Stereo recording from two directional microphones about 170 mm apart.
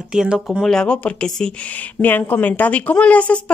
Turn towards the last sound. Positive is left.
turn(degrees=5)  # may be behind; listen again after turning